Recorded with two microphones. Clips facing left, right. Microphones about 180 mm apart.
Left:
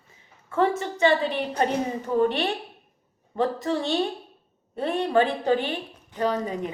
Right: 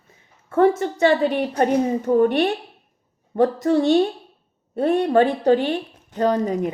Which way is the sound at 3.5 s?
65° right (ahead or behind).